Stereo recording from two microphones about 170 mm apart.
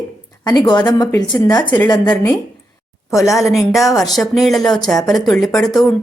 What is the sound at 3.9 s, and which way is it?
Speech, 25° left (ahead or behind).